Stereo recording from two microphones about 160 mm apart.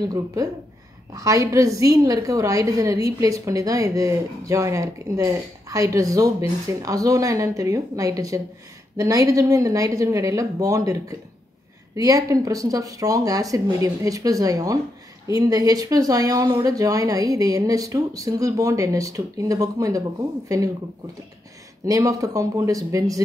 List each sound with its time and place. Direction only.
0.0 s a woman's voice: 20° right (ahead or behind)
21.8 s a woman's voice: 20° right (ahead or behind)